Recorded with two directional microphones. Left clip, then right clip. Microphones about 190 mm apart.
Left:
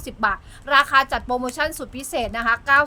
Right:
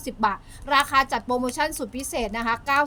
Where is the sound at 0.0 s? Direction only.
20° left (ahead or behind).